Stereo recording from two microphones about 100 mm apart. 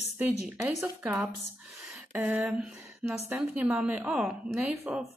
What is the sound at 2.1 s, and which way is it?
A woman's voice, 15° right (ahead or behind).